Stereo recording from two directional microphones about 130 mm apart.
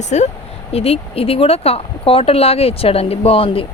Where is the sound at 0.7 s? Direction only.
50° left (ahead or behind).